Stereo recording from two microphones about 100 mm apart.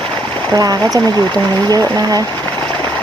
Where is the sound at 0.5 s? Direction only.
35° right (ahead or behind).